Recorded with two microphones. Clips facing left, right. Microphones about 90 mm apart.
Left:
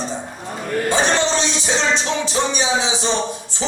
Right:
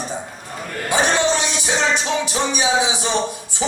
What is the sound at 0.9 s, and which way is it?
Music, 15° right (ahead or behind).